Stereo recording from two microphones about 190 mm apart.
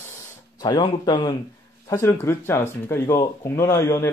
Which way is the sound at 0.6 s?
20° left (ahead or behind).